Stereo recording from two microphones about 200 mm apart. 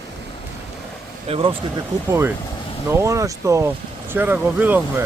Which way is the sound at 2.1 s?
10° right (ahead or behind).